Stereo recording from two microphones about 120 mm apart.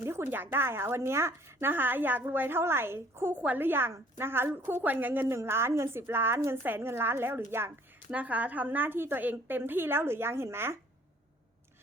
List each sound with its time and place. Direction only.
0.0 s a woman's voice: 20° right (ahead or behind)